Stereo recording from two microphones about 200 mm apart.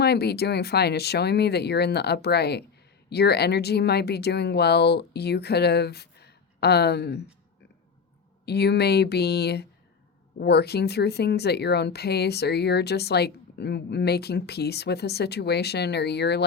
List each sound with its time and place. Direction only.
0.0 s speech: 55° left (ahead or behind)
8.4 s speech: 55° left (ahead or behind)